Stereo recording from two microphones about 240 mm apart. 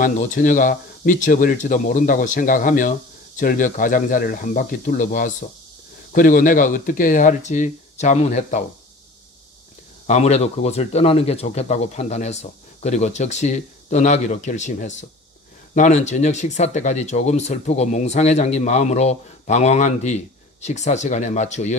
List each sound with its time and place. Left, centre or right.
0.0 s speech: left
10.0 s speech: left